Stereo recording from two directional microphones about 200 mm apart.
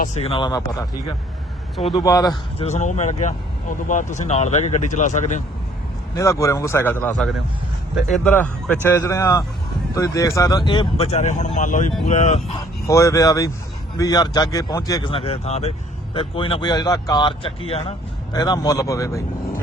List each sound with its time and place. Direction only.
0.0 s speech: 35° left (ahead or behind)
1.9 s speech: 20° left (ahead or behind)
2.6 s speech: 35° left (ahead or behind)
6.1 s speech: 15° left (ahead or behind); by 12.5 s 35° left (ahead or behind)
12.9 s speech: 15° left (ahead or behind)